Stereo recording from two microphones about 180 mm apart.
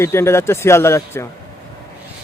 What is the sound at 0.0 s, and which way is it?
A man's voice, 15° left (ahead or behind).